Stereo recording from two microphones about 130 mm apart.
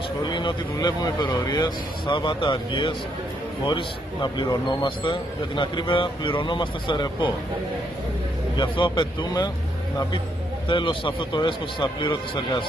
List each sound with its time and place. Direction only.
0.2 s a man's voice: 35° left (ahead or behind)
8.5 s a man's voice: 40° left (ahead or behind)
10.7 s a man's voice: 40° left (ahead or behind)